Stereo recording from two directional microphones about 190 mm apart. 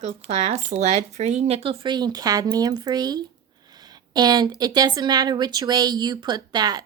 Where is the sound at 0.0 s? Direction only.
35° right (ahead or behind).